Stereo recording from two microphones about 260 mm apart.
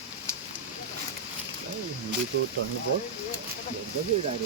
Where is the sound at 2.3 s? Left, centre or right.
Right.